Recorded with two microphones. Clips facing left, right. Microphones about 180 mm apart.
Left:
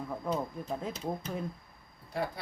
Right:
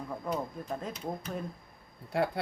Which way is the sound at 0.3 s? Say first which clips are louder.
Left 1 dB; 10° left (ahead or behind).